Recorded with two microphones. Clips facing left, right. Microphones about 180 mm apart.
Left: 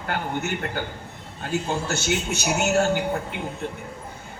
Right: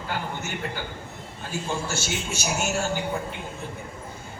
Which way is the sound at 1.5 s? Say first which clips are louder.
Left 4 dB; 60° left (ahead or behind).